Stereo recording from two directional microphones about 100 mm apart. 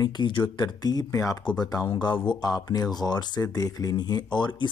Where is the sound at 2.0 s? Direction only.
50° left (ahead or behind).